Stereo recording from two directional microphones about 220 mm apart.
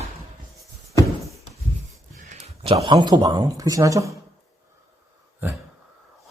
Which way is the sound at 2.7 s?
20° right (ahead or behind).